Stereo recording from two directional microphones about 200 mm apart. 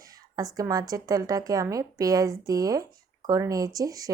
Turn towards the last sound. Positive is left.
turn(degrees=-15)  # may be behind; listen again after turning